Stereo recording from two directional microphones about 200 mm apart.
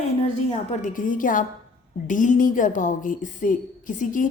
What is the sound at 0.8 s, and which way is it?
A woman's voice, 40° left (ahead or behind).